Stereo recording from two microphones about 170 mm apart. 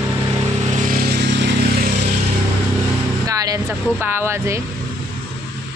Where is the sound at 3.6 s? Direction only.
15° right (ahead or behind).